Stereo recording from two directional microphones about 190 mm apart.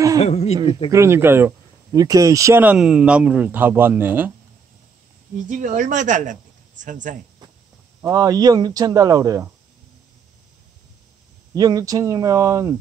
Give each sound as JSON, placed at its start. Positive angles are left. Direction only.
{"t": 0.2, "sound": "speech", "side_deg": 35}
{"t": 0.9, "sound": "speech", "side_deg": -15}
{"t": 5.5, "sound": "speech", "side_deg": -40}
{"t": 8.1, "sound": "speech", "side_deg": -20}
{"t": 11.5, "sound": "speech", "side_deg": -20}